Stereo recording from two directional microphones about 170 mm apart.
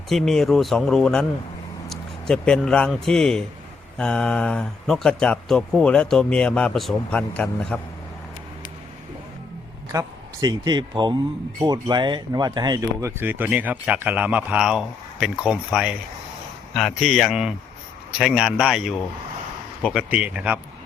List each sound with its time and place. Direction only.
0.1 s speech: centre (ahead or behind)
9.9 s speech: 20° right (ahead or behind)